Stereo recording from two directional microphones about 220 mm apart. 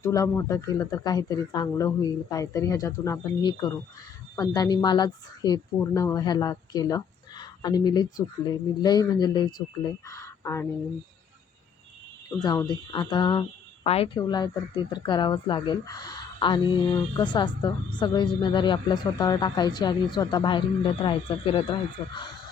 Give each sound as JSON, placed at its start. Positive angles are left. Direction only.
{"t": 0.0, "sound": "a woman's voice", "side_deg": 15}
{"t": 12.4, "sound": "a woman's voice", "side_deg": 15}